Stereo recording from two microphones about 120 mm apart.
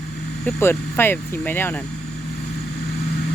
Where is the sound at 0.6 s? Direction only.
20° left (ahead or behind).